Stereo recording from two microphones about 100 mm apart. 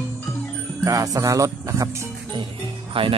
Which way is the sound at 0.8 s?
35° right (ahead or behind).